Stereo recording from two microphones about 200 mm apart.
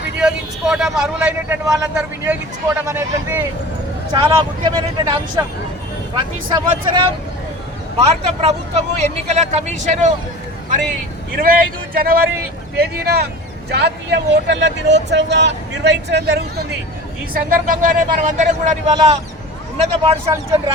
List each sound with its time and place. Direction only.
0.2 s a man's voice: 5° right (ahead or behind)
4.1 s speech: 25° right (ahead or behind)
6.5 s speech: 25° right (ahead or behind)
11.3 s speech: 45° right (ahead or behind)
17.3 s speech: 45° right (ahead or behind)